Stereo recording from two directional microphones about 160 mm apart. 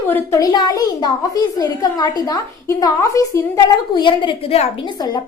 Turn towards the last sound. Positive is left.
turn(degrees=35)  # may be behind; listen again after turning